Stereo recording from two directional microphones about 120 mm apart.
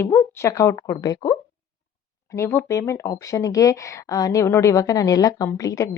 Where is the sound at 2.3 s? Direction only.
20° left (ahead or behind).